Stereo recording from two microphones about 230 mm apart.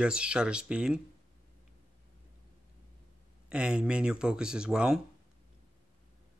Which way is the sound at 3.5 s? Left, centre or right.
Centre.